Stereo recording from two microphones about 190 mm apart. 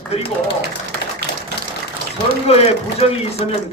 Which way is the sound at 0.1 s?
30° left (ahead or behind).